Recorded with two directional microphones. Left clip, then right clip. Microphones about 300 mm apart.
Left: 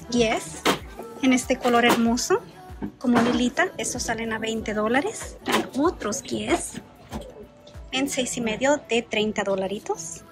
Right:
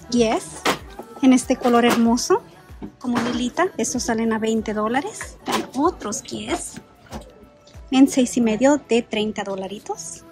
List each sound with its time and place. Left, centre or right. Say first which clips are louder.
0.1 s speech: right 3 dB; centre
7.9 s a woman's voice: right 8 dB; centre